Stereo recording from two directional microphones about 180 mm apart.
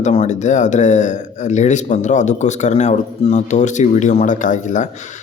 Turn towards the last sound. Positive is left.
turn(degrees=45)  # may be behind; listen again after turning